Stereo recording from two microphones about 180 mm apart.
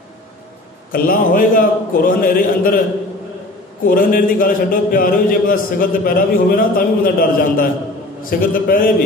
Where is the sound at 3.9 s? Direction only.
50° left (ahead or behind).